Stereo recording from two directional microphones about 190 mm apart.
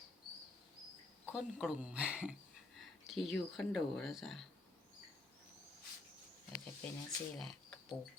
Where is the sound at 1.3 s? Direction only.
5° right (ahead or behind).